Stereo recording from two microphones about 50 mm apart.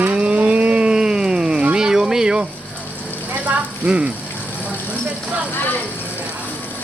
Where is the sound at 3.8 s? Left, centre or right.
Right.